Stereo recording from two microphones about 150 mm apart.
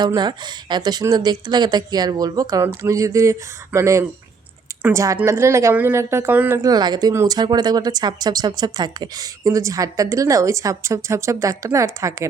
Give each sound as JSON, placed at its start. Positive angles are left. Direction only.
{"t": 0.0, "sound": "speech", "side_deg": -30}
{"t": 6.6, "sound": "speech", "side_deg": -25}
{"t": 7.1, "sound": "speech", "side_deg": -15}
{"t": 7.3, "sound": "speech", "side_deg": -30}